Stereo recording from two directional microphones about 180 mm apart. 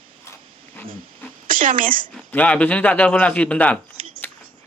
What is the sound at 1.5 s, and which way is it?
Speech, 50° right (ahead or behind).